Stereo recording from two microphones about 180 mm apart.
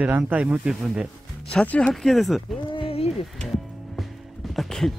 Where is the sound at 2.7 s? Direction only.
30° left (ahead or behind).